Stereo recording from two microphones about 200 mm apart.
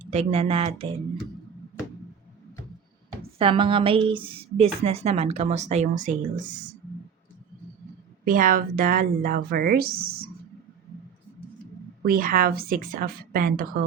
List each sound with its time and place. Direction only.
0.1 s a woman's voice: 30° right (ahead or behind)
3.3 s a woman's voice: 25° right (ahead or behind)
8.2 s speech: 45° right (ahead or behind)
12.0 s speech: 45° right (ahead or behind)